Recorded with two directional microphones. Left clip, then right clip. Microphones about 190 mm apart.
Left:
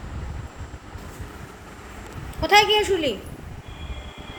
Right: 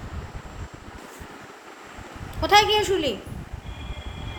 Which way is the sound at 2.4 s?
40° right (ahead or behind).